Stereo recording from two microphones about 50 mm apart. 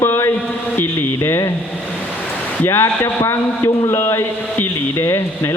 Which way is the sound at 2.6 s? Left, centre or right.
Left.